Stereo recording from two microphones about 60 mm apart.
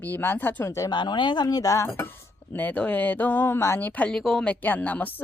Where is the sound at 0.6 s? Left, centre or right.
Left.